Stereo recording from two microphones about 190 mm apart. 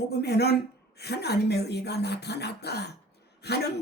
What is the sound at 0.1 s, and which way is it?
Speech, 60° left (ahead or behind).